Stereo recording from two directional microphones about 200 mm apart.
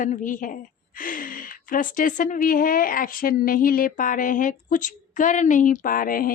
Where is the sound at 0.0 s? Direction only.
40° left (ahead or behind).